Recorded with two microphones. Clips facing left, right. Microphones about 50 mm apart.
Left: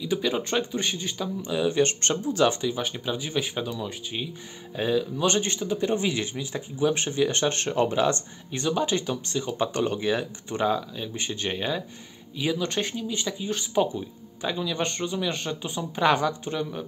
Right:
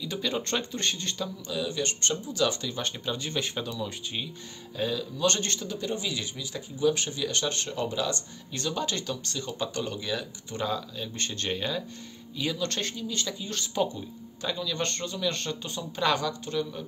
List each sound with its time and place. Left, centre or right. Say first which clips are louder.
0.0 s speech: left 5 dB; centre
1.5 s a man's voice: left 9 dB; left
2.6 s speech: left 4 dB; centre
4.7 s a man's voice: left 5 dB; left
8.5 s speech: left 6 dB; centre
9.8 s speech: left 7 dB; left